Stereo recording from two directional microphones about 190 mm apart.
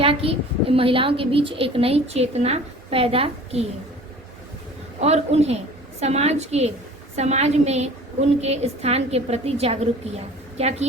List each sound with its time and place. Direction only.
0.0 s a child's voice: 30° right (ahead or behind)
4.9 s a woman's voice: 35° right (ahead or behind)